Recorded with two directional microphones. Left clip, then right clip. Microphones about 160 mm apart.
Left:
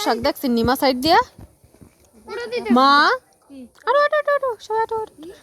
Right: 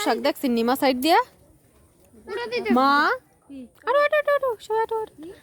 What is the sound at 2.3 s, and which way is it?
Speech, 90° right.